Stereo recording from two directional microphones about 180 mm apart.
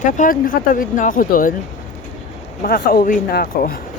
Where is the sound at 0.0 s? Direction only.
50° left (ahead or behind).